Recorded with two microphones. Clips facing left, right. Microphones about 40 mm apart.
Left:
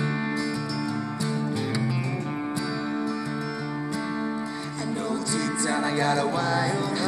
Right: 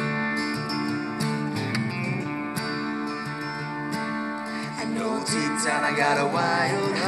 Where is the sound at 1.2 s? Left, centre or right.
Left.